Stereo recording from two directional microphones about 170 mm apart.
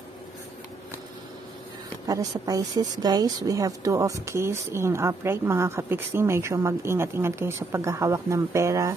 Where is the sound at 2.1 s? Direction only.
20° right (ahead or behind).